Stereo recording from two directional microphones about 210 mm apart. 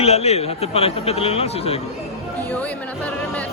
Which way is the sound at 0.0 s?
30° left (ahead or behind).